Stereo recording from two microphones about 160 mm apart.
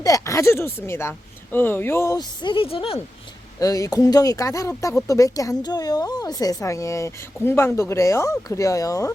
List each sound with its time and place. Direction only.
0.0 s speech: 20° left (ahead or behind)
3.6 s speech: 20° left (ahead or behind)